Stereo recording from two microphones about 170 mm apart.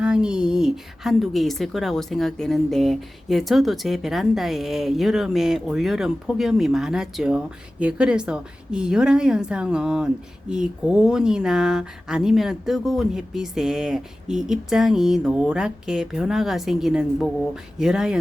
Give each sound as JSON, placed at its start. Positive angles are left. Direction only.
{"t": 0.0, "sound": "a woman's voice", "side_deg": -5}